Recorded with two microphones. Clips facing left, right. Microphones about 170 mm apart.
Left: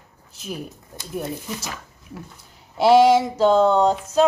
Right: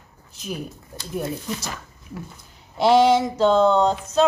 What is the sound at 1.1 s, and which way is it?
Speech, 5° left (ahead or behind).